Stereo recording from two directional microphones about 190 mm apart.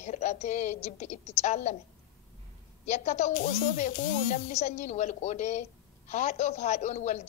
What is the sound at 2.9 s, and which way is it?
Speech, 35° left (ahead or behind).